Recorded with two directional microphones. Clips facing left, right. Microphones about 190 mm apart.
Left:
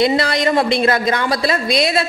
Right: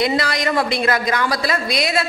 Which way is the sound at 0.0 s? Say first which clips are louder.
Left 4 dB; 25° left (ahead or behind).